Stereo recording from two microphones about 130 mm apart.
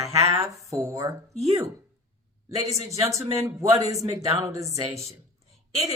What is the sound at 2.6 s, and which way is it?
Speech, 55° right (ahead or behind).